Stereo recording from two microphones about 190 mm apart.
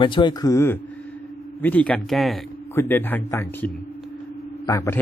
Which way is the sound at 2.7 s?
10° left (ahead or behind).